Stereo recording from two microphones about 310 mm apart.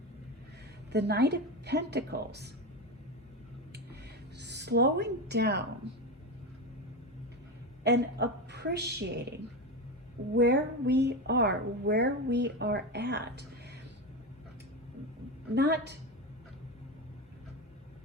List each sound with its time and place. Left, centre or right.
0.9 s a woman's voice: right
4.4 s speech: right
7.9 s a woman's voice: right
10.3 s a woman's voice: right
15.5 s a woman's voice: right